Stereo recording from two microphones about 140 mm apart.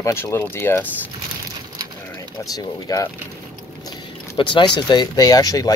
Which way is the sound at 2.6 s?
25° left (ahead or behind).